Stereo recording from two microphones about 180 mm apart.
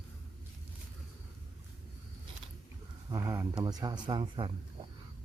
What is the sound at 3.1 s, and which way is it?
Speech, 20° right (ahead or behind).